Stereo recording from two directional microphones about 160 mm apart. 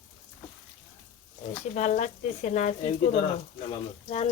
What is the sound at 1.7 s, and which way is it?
Speech, 50° left (ahead or behind).